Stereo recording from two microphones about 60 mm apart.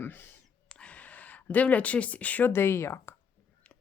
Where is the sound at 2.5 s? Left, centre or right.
Left.